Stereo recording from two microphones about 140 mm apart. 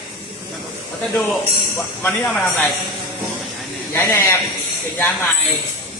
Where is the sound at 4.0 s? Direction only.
15° left (ahead or behind).